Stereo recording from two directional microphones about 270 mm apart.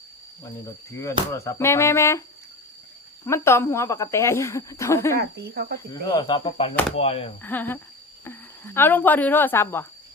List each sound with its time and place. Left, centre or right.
0.6 s speech: centre
3.2 s speech: centre
5.4 s speech: right
5.9 s speech: centre
7.4 s speech: centre